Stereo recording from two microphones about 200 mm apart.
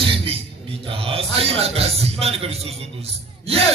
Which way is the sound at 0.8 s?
30° right (ahead or behind).